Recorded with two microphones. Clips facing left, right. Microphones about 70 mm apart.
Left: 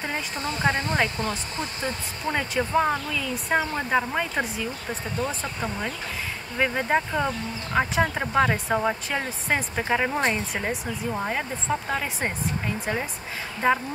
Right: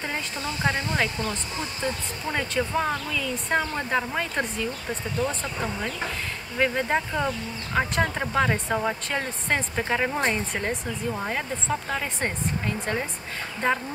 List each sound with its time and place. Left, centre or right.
0.0 s speech: centre